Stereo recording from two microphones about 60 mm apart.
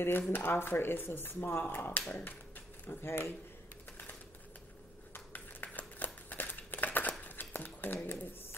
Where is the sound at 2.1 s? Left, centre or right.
Left.